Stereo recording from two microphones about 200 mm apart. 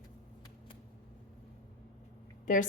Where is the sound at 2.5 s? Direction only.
40° left (ahead or behind).